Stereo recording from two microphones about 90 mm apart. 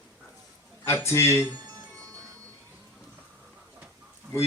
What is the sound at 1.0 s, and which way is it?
Speech, 30° left (ahead or behind).